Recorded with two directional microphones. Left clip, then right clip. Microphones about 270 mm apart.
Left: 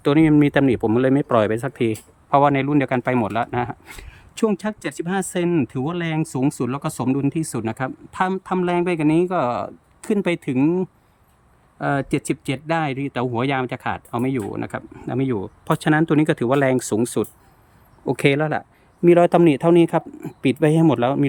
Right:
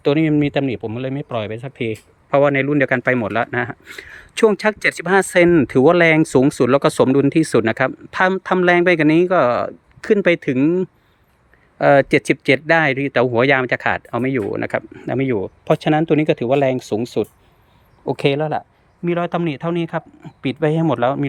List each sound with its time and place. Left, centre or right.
0.0 s speech: centre
4.5 s speech: centre